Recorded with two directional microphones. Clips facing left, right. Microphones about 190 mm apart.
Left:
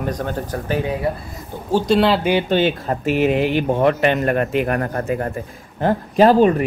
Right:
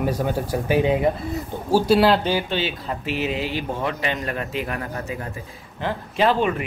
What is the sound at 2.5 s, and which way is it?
Speech, 50° left (ahead or behind).